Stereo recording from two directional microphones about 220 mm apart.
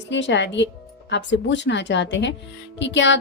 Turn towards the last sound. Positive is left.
turn(degrees=55)  # may be behind; listen again after turning